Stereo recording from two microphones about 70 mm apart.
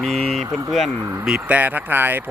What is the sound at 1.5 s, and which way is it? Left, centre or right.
Speech, right.